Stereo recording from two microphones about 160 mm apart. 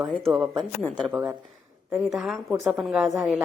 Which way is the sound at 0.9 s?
Centre (ahead or behind).